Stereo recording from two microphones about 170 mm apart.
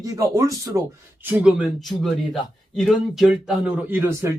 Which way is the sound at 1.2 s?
10° right (ahead or behind).